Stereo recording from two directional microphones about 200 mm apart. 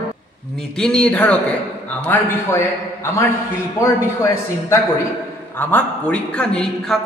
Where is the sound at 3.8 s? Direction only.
15° left (ahead or behind).